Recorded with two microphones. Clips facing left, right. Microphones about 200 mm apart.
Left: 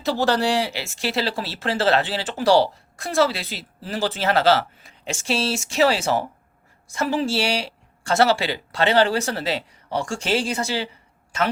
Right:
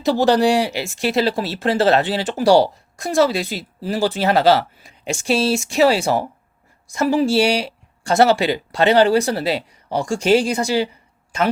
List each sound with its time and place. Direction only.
0.0 s speech: 15° right (ahead or behind)
1.5 s speech: 40° right (ahead or behind)
2.0 s speech: 15° right (ahead or behind)